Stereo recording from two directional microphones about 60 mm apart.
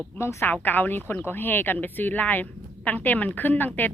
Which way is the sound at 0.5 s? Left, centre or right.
Left.